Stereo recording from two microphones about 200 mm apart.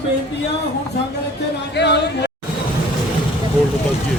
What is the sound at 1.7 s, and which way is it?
Speech, 55° left (ahead or behind).